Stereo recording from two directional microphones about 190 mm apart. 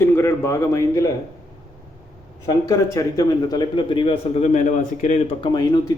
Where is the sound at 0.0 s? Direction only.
15° left (ahead or behind).